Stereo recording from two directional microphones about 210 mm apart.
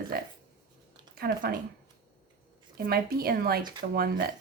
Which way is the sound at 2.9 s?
45° right (ahead or behind).